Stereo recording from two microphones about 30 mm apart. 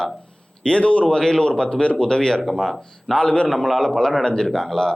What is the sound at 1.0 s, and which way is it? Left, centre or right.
Speech, left.